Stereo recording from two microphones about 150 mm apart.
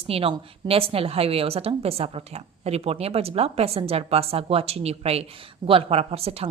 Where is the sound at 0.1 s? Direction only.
40° right (ahead or behind).